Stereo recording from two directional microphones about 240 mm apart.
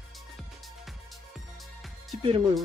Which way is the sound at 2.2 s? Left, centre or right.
Right.